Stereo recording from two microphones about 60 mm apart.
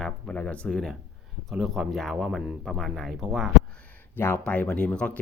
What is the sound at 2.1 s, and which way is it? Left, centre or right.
Speech, centre.